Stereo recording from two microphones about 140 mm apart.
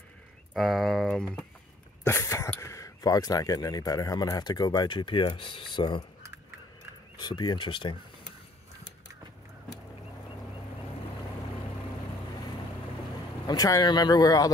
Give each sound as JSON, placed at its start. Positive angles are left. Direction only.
{"t": 0.6, "sound": "speech", "side_deg": 0}
{"t": 2.0, "sound": "speech", "side_deg": 20}
{"t": 7.2, "sound": "speech", "side_deg": 30}
{"t": 13.5, "sound": "speech", "side_deg": 25}